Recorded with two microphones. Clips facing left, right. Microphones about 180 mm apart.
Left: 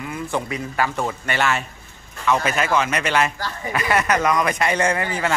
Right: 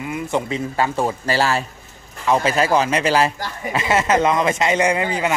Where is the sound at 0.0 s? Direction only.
20° right (ahead or behind).